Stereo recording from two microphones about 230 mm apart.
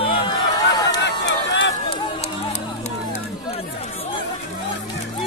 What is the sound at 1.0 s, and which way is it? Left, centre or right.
Run, left.